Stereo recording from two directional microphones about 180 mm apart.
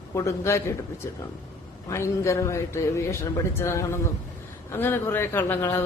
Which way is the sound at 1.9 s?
15° left (ahead or behind).